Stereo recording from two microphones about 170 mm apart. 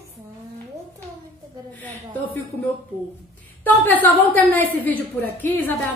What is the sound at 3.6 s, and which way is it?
A woman's voice, 10° left (ahead or behind).